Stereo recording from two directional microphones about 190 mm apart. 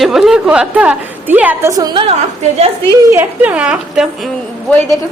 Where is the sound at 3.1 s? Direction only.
10° right (ahead or behind).